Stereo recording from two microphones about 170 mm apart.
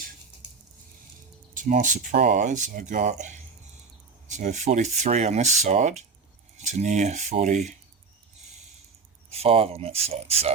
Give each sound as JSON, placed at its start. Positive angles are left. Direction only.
{"t": 1.6, "sound": "speech", "side_deg": -50}
{"t": 9.3, "sound": "speech", "side_deg": -35}